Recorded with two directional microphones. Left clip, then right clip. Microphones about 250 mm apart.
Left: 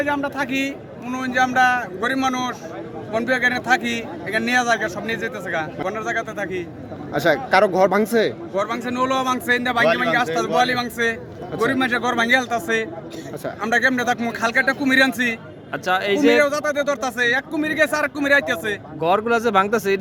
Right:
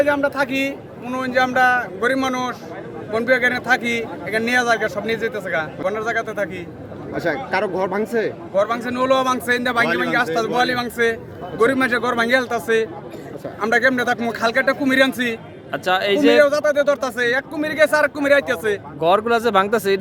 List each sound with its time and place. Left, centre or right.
0.0 s a man's voice: centre
7.1 s speech: left
8.5 s a man's voice: centre